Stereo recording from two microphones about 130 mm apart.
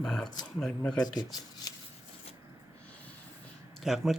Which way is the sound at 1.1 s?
30° left (ahead or behind).